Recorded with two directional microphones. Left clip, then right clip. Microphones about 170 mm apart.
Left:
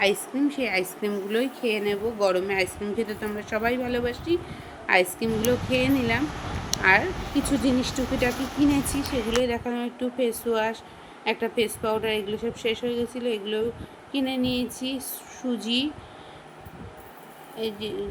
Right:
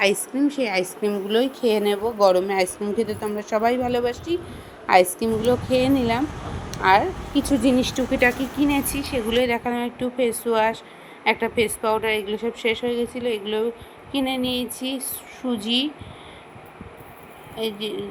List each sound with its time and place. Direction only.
0.0 s speech: 20° right (ahead or behind)
1.6 s a woman's voice: 30° right (ahead or behind); by 15.9 s 5° right (ahead or behind)
17.6 s speech: 5° right (ahead or behind)